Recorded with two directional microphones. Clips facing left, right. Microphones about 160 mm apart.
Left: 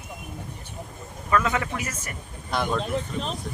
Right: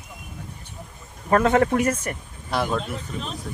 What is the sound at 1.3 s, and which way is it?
Speech, 45° right (ahead or behind).